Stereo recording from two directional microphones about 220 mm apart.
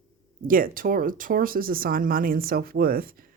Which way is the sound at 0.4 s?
40° right (ahead or behind).